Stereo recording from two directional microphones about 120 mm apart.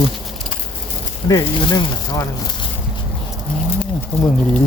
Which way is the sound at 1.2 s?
35° left (ahead or behind).